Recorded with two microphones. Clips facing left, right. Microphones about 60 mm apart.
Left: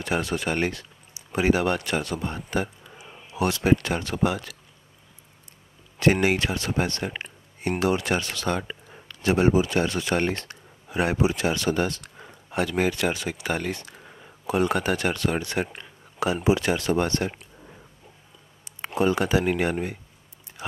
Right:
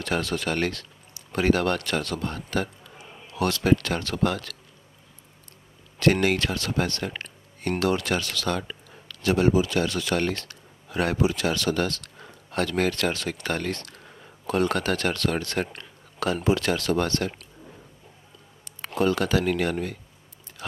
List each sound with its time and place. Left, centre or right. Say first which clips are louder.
0.0 s speech: left 1 dB; centre
5.9 s speech: left 1 dB; centre
18.8 s speech: left 1 dB; centre